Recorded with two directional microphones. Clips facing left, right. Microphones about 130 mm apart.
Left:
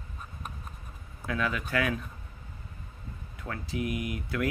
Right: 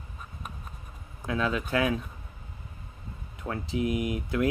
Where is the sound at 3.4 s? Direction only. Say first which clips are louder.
Right 4 dB; 20° right (ahead or behind).